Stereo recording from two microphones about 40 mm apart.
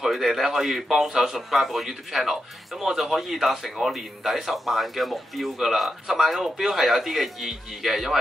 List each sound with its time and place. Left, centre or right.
0.0 s a man's voice: centre